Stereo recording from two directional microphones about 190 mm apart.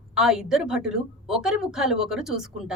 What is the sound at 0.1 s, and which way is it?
A woman's voice, centre (ahead or behind).